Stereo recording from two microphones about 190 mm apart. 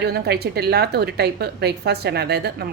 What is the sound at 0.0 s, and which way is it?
A woman's voice, 55° right (ahead or behind).